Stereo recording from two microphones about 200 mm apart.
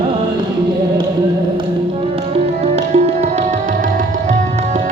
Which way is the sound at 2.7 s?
35° right (ahead or behind).